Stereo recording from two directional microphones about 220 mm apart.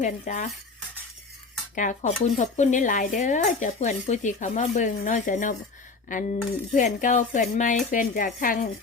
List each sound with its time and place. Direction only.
0.0 s speech: 35° left (ahead or behind)
1.7 s speech: 35° left (ahead or behind)